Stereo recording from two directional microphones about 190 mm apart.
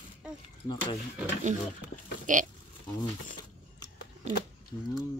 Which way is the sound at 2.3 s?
45° right (ahead or behind).